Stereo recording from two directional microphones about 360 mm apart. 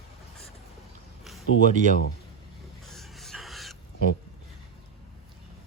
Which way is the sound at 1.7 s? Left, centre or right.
Right.